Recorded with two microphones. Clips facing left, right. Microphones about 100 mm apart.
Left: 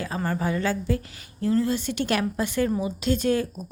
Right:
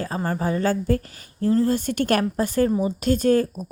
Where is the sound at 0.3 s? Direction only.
35° right (ahead or behind).